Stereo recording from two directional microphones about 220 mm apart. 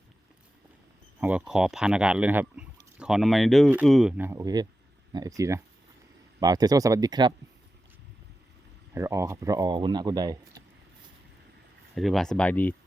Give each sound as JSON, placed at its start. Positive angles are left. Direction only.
{"t": 1.2, "sound": "speech", "side_deg": -5}
{"t": 9.0, "sound": "speech", "side_deg": -15}
{"t": 11.9, "sound": "speech", "side_deg": 0}